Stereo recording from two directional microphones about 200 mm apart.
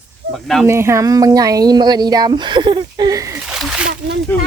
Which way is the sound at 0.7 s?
15° right (ahead or behind).